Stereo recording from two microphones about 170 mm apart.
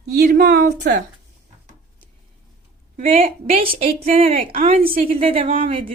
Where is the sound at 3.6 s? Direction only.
35° right (ahead or behind).